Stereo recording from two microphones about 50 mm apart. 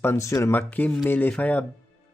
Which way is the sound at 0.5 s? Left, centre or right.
Left.